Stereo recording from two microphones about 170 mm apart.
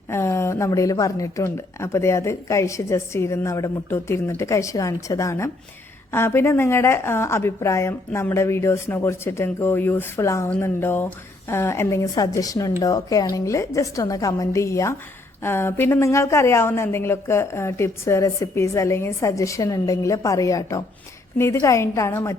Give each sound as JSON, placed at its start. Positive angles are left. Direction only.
{"t": 0.1, "sound": "a woman's voice", "side_deg": 15}